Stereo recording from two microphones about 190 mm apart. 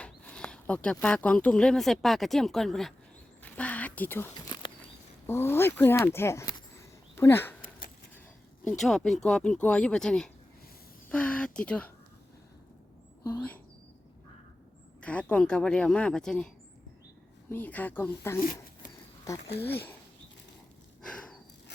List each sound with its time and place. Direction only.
0.0 s speech: 5° left (ahead or behind)
3.4 s a sound: 5° left (ahead or behind)
4.6 s a sound: 25° left (ahead or behind)
5.2 s speech: 10° left (ahead or behind)
8.8 s speech: centre (ahead or behind)
13.2 s speech: 10° left (ahead or behind)
15.0 s speech: 5° left (ahead or behind)
17.5 s speech: 10° left (ahead or behind)
21.0 s a sound: 5° left (ahead or behind)